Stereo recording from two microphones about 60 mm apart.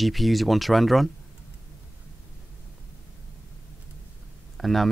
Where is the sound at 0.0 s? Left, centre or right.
Centre.